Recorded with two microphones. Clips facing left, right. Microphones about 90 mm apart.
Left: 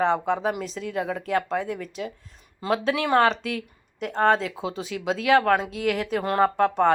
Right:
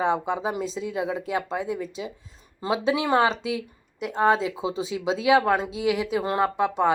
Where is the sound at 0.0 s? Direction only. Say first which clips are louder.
Left 2 dB; 10° right (ahead or behind).